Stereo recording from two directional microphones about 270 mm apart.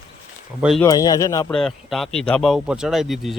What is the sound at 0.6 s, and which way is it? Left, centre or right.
Speech, centre.